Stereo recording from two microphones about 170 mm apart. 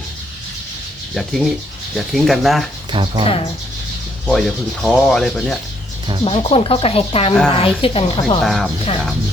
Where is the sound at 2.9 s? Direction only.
30° right (ahead or behind).